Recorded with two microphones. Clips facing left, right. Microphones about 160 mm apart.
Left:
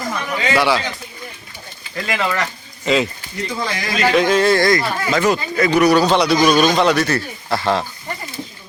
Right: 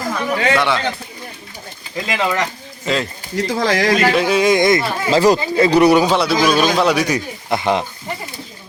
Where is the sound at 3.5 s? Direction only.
90° right.